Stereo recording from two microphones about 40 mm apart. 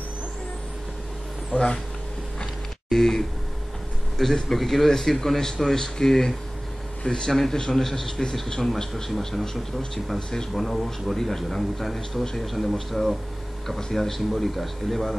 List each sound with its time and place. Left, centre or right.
1.5 s speech: left
2.9 s a man's voice: centre
10.5 s a man's voice: centre